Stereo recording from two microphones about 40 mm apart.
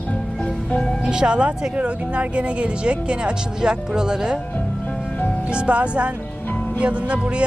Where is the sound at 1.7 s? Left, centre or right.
Right.